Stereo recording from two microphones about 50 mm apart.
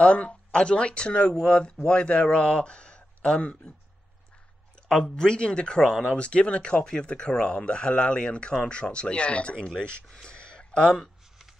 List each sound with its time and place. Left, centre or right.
0.0 s speech: left
4.8 s speech: centre
6.1 s speech: left